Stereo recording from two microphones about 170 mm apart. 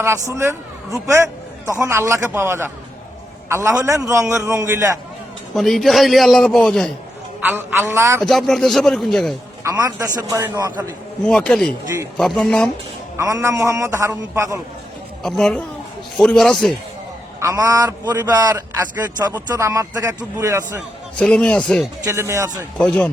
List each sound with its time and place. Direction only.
0.0 s a man's voice: 15° right (ahead or behind)
5.5 s a man's voice: centre (ahead or behind)
7.4 s a man's voice: 10° right (ahead or behind)
8.2 s a man's voice: centre (ahead or behind)
9.6 s a man's voice: 20° right (ahead or behind)
11.3 s a man's voice: 5° left (ahead or behind)
13.1 s a man's voice: 20° right (ahead or behind)
15.2 s a man's voice: centre (ahead or behind)
17.4 s a man's voice: 20° right (ahead or behind)
21.2 s a man's voice: 5° left (ahead or behind)
22.0 s a man's voice: 15° right (ahead or behind)
22.8 s speech: 5° left (ahead or behind)